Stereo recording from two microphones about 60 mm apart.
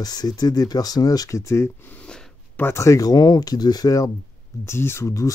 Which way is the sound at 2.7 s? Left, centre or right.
Left.